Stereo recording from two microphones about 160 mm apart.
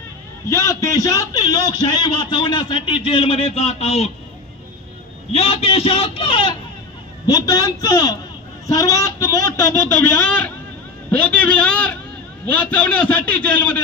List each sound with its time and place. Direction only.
0.5 s speech: 20° left (ahead or behind); by 4.1 s 40° left (ahead or behind)
5.3 s a man's voice: 40° left (ahead or behind); by 13.8 s 10° left (ahead or behind)